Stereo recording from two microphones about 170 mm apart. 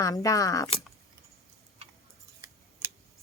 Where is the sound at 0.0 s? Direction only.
20° left (ahead or behind).